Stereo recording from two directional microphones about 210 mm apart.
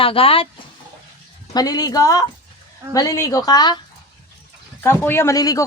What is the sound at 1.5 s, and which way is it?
Speech, 20° left (ahead or behind).